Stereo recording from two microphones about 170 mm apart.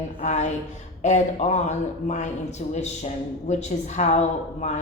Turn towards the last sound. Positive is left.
turn(degrees=40)  # may be behind; listen again after turning